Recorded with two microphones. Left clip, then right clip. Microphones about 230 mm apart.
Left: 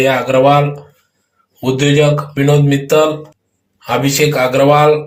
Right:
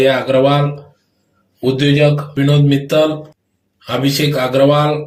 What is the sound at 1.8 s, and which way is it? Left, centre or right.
Speech, centre.